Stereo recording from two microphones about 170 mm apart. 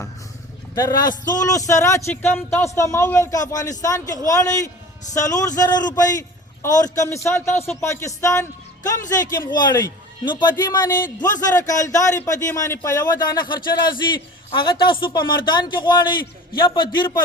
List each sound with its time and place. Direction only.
0.8 s a man's voice: 25° left (ahead or behind)